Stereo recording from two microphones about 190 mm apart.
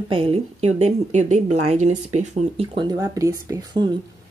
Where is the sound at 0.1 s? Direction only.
30° right (ahead or behind).